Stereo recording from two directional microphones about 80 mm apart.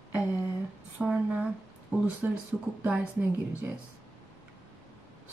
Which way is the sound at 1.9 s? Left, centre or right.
Right.